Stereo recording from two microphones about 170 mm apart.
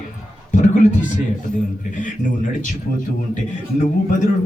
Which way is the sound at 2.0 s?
50° left (ahead or behind).